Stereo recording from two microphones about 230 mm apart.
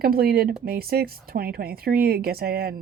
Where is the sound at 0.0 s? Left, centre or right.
Right.